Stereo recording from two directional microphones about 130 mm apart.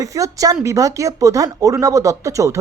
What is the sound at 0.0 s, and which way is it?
Speech, 25° right (ahead or behind).